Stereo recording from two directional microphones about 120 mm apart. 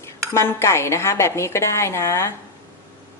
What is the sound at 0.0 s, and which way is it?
A woman's voice, 25° left (ahead or behind).